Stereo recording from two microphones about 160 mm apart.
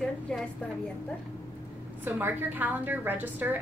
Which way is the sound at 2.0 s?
10° right (ahead or behind).